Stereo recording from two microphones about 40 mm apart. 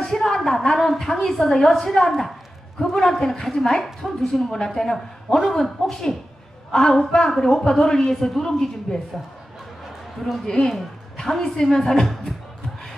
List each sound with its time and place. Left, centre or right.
0.0 s a sound: centre
0.7 s a man's voice: centre
10.1 s a man's voice: centre